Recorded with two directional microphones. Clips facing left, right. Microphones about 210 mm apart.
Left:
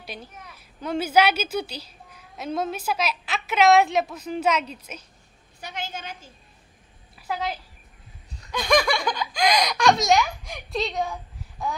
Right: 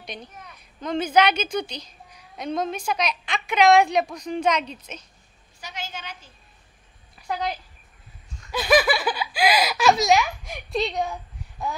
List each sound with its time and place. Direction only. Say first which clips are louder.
0.0 s a woman's voice: right 1 dB; 5° left (ahead or behind)
5.6 s a woman's voice: left 2 dB; 55° left (ahead or behind)
7.2 s a child's voice: right 1 dB; 5° left (ahead or behind)